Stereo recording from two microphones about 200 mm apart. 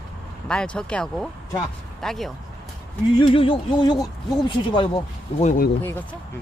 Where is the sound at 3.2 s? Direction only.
25° left (ahead or behind).